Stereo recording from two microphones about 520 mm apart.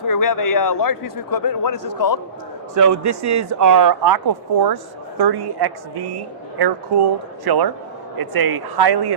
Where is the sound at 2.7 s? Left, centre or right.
Right.